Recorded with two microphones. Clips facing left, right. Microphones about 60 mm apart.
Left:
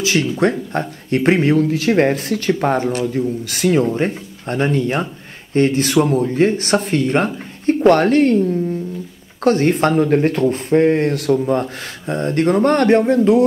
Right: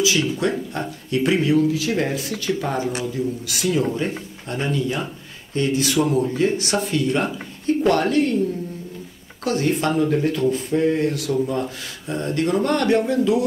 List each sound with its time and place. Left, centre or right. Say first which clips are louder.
0.0 s speech: left 4 dB; left
9.4 s speech: left 7 dB; left